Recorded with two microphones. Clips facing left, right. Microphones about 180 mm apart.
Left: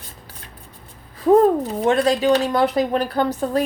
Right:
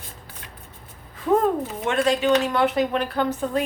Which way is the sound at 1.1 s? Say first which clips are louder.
Left 6 dB; 35° left (ahead or behind).